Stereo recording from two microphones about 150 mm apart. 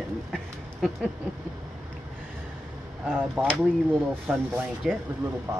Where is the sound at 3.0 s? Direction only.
5° right (ahead or behind).